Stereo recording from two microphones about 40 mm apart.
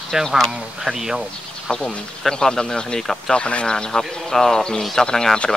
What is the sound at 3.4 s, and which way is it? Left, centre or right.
Speech, left.